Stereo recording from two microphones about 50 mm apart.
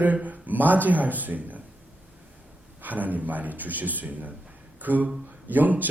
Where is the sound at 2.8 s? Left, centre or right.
Right.